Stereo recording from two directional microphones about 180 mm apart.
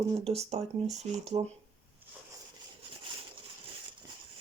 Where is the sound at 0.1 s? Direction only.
35° right (ahead or behind).